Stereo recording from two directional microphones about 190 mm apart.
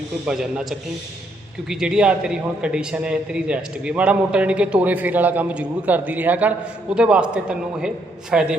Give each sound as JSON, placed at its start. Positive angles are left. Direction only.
{"t": 0.3, "sound": "a man's voice", "side_deg": -5}